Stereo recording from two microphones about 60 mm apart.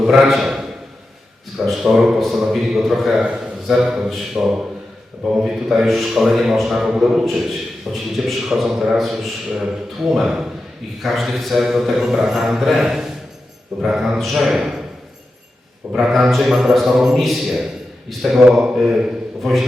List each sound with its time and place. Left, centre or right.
0.0 s a man's voice: centre
15.9 s a man's voice: centre
19.4 s a man's voice: centre